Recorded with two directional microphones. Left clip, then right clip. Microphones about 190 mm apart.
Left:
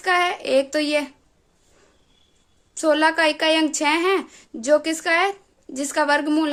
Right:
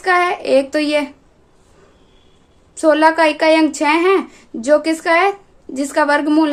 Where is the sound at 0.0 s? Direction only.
20° left (ahead or behind).